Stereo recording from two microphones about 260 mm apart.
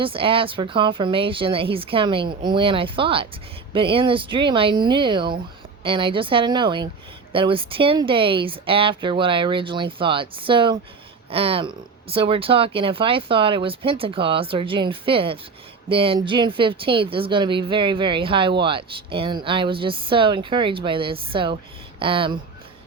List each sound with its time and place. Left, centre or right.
0.0 s speech: right